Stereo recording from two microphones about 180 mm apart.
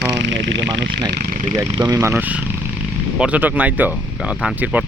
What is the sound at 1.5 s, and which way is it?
Speech, 20° right (ahead or behind).